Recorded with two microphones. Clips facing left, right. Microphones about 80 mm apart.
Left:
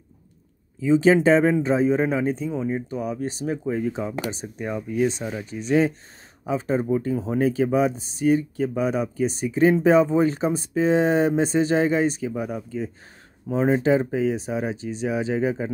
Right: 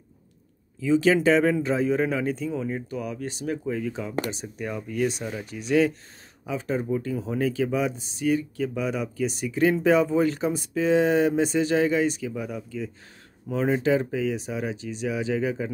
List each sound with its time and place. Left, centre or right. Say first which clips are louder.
0.7 s a man's voice: left 3 dB; left
3.0 s speech: left 4 dB; left
4.6 s a man's voice: left 4 dB; centre
5.4 s speech: left 1 dB; left
13.5 s speech: left 3 dB; left